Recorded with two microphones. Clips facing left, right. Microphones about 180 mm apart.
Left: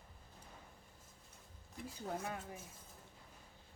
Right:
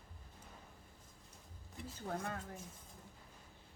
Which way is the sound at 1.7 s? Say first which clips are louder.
Even; centre (ahead or behind).